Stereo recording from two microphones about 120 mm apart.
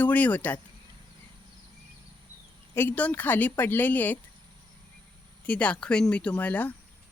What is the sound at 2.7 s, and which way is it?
Speech, 15° left (ahead or behind).